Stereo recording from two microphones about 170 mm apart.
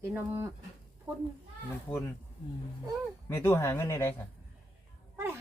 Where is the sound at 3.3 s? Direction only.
15° left (ahead or behind).